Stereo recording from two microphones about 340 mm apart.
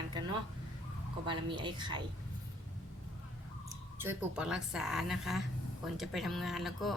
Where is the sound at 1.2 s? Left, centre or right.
Centre.